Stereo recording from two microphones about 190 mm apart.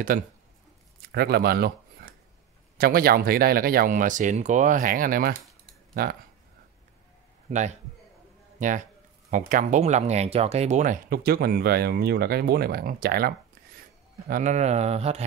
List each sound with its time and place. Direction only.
1.1 s speech: 55° right (ahead or behind)
2.8 s speech: 50° right (ahead or behind)
7.4 s a man's voice: 40° right (ahead or behind)